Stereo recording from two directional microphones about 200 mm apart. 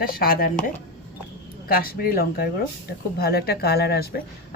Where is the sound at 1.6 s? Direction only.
50° left (ahead or behind).